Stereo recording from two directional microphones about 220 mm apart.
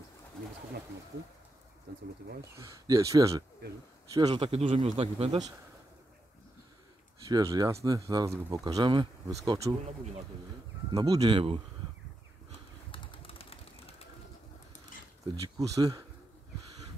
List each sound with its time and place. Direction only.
1.9 s speech: 50° right (ahead or behind)
2.5 s a man's voice: 15° right (ahead or behind)
7.2 s a man's voice: 15° right (ahead or behind)
10.9 s a man's voice: 20° right (ahead or behind)
12.9 s bird: 25° left (ahead or behind)
15.4 s speech: 15° right (ahead or behind)